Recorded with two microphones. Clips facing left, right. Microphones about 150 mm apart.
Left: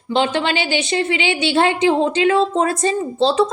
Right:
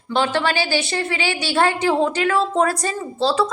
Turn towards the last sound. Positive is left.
turn(degrees=20)  # may be behind; listen again after turning